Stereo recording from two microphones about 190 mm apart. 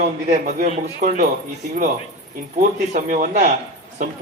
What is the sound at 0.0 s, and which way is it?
A man's voice, 40° right (ahead or behind).